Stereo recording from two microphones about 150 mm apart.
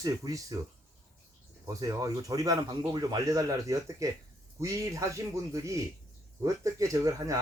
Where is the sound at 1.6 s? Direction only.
20° right (ahead or behind).